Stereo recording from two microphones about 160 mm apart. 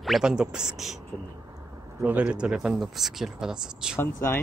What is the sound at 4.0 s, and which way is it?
Speech, 15° left (ahead or behind).